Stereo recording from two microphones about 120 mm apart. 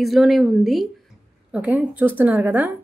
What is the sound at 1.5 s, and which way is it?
A woman's voice, 10° right (ahead or behind).